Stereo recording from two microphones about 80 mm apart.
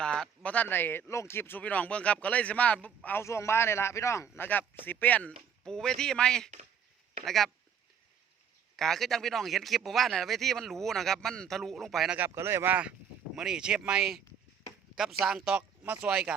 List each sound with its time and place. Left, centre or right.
0.0 s a sound: centre
0.4 s speech: centre
3.2 s a man's voice: left
4.4 s speech: left
5.6 s speech: centre
8.7 s speech: centre
12.3 s speech: right
13.3 s speech: centre
15.3 s speech: centre